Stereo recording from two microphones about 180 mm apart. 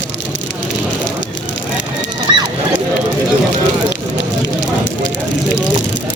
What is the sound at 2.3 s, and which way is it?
Horse, 25° right (ahead or behind).